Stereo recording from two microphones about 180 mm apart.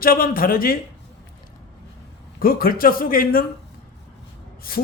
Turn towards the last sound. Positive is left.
turn(degrees=55)  # may be behind; listen again after turning